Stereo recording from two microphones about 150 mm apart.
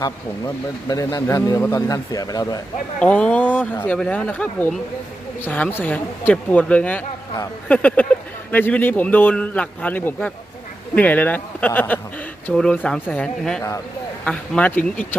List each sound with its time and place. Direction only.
0.0 s speech: 25° left (ahead or behind)
3.0 s a man's voice: 10° left (ahead or behind)